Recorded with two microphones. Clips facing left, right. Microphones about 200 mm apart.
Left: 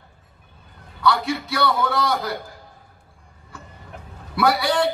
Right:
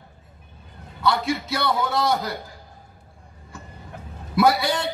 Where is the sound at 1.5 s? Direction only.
20° right (ahead or behind).